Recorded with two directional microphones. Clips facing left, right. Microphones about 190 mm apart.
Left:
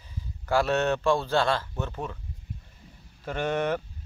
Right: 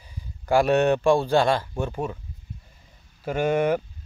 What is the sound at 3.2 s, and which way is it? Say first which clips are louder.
Speech: right 5 dB; 10° right (ahead or behind).